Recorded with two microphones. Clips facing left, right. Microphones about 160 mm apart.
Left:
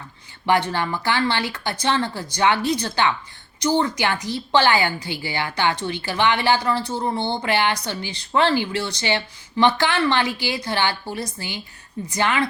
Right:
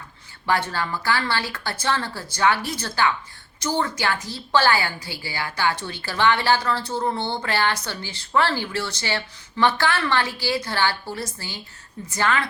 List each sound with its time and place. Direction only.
0.7 s a woman's voice: 20° left (ahead or behind)